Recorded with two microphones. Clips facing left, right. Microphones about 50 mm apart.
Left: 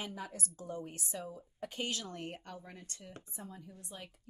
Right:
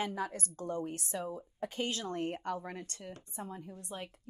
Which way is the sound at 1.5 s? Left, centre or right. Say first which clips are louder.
Right 2 dB; right.